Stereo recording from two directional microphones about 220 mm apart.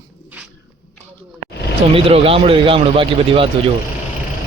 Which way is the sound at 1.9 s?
25° right (ahead or behind).